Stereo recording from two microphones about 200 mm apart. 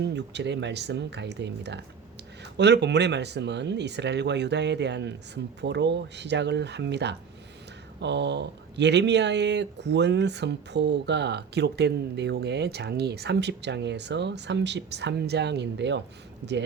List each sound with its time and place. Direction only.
0.0 s speech: 60° right (ahead or behind)